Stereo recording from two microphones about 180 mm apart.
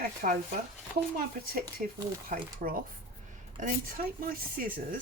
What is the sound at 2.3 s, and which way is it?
Speech, 50° right (ahead or behind).